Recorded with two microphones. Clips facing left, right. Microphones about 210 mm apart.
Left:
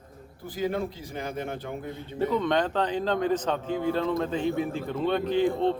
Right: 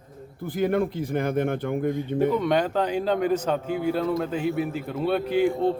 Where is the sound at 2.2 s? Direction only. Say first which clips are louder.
Right 2 dB; 10° right (ahead or behind).